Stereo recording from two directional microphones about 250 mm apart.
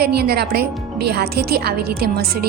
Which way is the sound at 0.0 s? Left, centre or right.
Right.